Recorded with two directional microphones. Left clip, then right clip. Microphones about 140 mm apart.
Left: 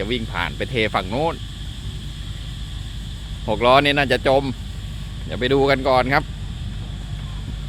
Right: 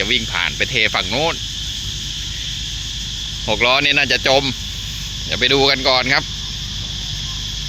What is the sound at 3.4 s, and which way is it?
Speech, 20° left (ahead or behind).